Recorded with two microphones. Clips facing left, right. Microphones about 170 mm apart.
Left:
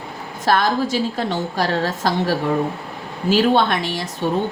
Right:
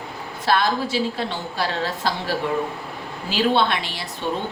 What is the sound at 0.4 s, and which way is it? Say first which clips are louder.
A woman's voice: left 3 dB; 45° left (ahead or behind).